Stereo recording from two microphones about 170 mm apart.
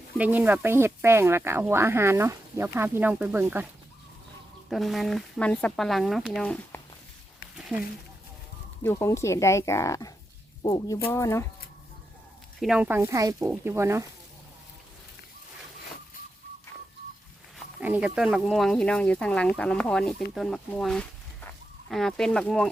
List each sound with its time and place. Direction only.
0.2 s speech: 10° right (ahead or behind)
4.7 s speech: centre (ahead or behind)
8.8 s speech: 15° left (ahead or behind)
12.5 s speech: 5° right (ahead or behind)
13.4 s speech: 5° right (ahead or behind)
17.6 s speech: 10° right (ahead or behind)